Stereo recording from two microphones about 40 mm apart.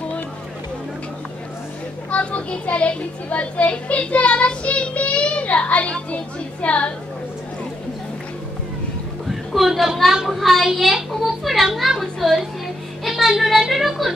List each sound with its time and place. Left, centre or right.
2.0 s a child's voice: left
9.3 s speech: centre
10.2 s child singing: centre
10.8 s a sound: centre
11.1 s a child's voice: centre
13.0 s music: centre
13.4 s a sound: centre